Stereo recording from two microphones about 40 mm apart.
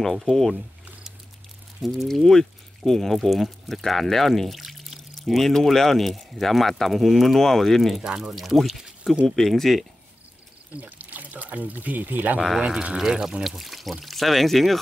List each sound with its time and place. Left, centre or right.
0.0 s speech: centre
1.8 s speech: centre
2.2 s speech: centre
8.0 s speech: centre
8.3 s speech: centre
9.3 s speech: centre
10.8 s speech: right
12.4 s speech: centre
12.9 s speech: centre
13.4 s speech: centre